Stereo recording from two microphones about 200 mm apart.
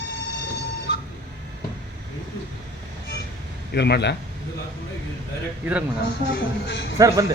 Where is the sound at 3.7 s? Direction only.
55° left (ahead or behind).